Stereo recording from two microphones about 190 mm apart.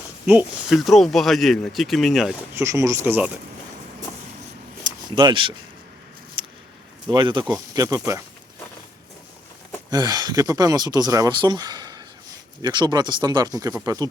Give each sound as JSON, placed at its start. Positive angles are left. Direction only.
{"t": 0.3, "sound": "speech", "side_deg": -5}
{"t": 2.6, "sound": "speech", "side_deg": -15}
{"t": 4.8, "sound": "a sound", "side_deg": -25}
{"t": 7.1, "sound": "speech", "side_deg": -25}
{"t": 9.9, "sound": "speech", "side_deg": -20}